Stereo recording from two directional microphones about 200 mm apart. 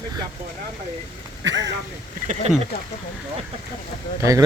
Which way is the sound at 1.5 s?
65° right (ahead or behind).